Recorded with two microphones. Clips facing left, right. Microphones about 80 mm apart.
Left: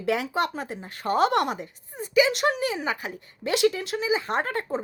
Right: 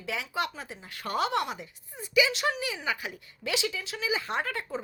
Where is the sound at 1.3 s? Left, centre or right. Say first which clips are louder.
Left 6 dB; left.